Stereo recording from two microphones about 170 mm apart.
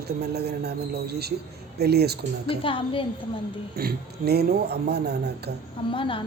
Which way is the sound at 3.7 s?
65° right (ahead or behind).